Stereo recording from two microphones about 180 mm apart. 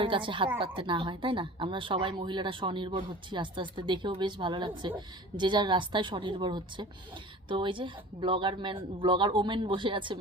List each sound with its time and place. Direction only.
0.0 s speech: 30° right (ahead or behind)